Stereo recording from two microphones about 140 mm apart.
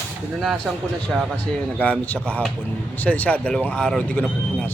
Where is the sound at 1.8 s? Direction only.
10° left (ahead or behind).